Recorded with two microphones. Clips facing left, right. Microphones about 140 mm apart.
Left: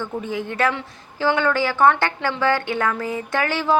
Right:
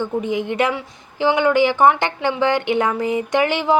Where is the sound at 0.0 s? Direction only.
15° right (ahead or behind).